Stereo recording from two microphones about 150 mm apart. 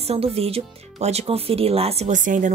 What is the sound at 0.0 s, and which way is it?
Speech, 40° right (ahead or behind).